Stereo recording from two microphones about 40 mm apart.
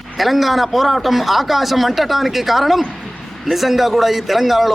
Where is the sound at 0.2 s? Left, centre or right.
Centre.